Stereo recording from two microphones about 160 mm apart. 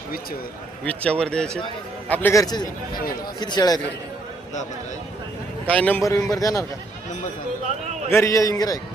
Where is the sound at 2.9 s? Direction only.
65° left (ahead or behind).